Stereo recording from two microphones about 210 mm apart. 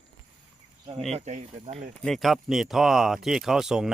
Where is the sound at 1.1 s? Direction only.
35° right (ahead or behind).